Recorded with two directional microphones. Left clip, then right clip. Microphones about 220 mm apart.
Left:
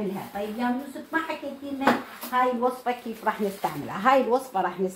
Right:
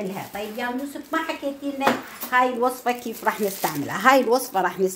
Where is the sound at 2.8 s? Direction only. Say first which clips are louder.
Right 3 dB; 50° right (ahead or behind).